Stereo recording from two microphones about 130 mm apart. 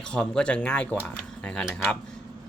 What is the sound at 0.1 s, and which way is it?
Speech, 5° left (ahead or behind).